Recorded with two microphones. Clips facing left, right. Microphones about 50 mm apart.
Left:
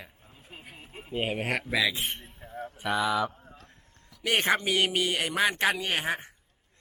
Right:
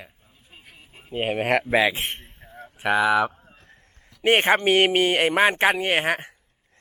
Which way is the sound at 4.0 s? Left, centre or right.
Right.